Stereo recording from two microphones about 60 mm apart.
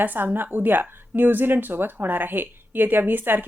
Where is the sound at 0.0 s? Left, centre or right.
Right.